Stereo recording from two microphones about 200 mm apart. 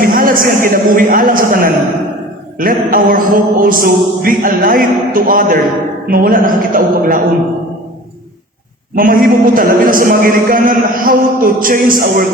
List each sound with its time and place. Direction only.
0.0 s a man's voice: 45° right (ahead or behind)
9.0 s a man's voice: 45° right (ahead or behind)